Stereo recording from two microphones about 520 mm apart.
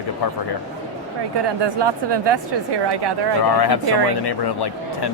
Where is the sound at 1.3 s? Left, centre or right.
Right.